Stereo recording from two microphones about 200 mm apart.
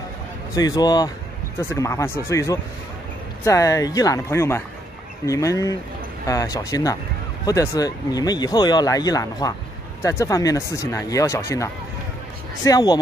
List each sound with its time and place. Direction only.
0.6 s speech: 20° left (ahead or behind)